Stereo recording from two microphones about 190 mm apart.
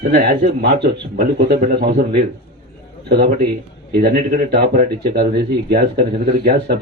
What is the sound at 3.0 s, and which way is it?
Speech, 60° right (ahead or behind).